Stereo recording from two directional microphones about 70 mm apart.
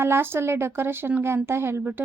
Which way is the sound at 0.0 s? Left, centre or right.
Right.